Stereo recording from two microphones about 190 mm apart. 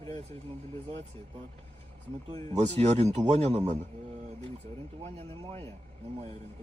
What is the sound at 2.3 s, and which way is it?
A man's voice, 30° right (ahead or behind).